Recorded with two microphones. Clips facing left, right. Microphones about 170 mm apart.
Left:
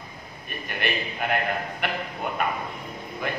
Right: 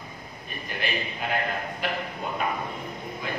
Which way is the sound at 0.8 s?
60° left (ahead or behind).